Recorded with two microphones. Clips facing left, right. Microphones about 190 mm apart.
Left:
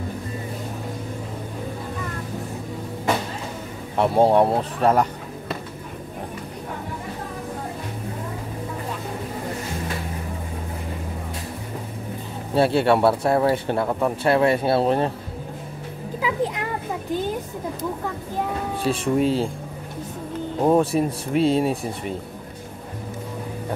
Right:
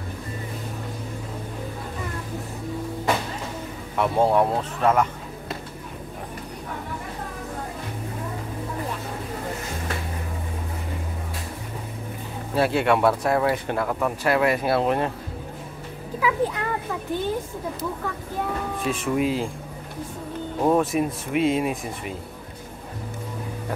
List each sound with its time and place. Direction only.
3.9 s speech: 30° left (ahead or behind)
12.5 s speech: 30° left (ahead or behind)
16.2 s a child's voice: 25° left (ahead or behind)
18.8 s speech: 35° left (ahead or behind)
20.7 s speech: 30° left (ahead or behind)